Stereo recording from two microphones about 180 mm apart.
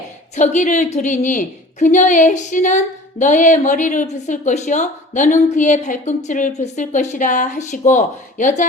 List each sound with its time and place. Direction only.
0.3 s a woman's voice: 40° left (ahead or behind)